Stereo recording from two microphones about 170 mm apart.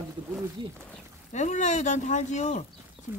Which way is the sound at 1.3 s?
45° left (ahead or behind).